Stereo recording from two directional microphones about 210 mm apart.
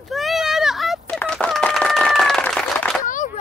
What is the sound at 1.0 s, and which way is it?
Applause, 5° left (ahead or behind).